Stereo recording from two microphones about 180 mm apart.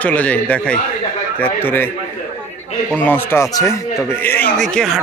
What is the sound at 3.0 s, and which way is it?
A man's voice, 10° left (ahead or behind).